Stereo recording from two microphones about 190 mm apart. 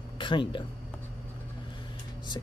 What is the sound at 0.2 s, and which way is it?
Speech, 25° left (ahead or behind).